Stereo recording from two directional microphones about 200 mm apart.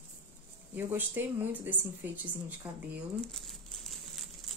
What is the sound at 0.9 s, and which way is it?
Speech, 10° right (ahead or behind).